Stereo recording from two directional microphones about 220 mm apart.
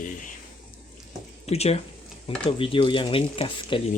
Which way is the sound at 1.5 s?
30° left (ahead or behind).